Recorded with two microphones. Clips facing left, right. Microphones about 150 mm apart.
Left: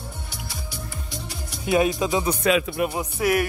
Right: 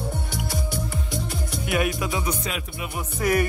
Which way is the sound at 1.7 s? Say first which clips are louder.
Left 5 dB; 25° left (ahead or behind).